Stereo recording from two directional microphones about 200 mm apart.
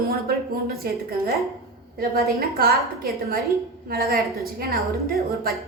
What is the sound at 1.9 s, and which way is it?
Speech, 50° right (ahead or behind).